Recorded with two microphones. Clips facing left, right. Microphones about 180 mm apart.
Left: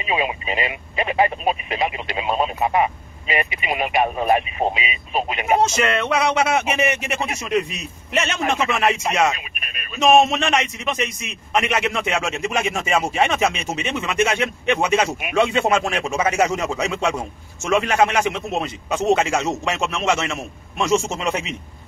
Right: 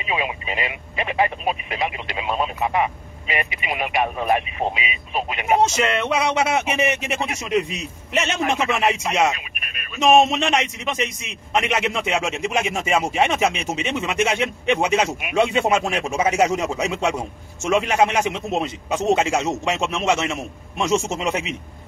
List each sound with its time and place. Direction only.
0.1 s speech: 25° left (ahead or behind)
5.6 s a man's voice: 20° right (ahead or behind)
10.0 s a man's voice: 15° right (ahead or behind)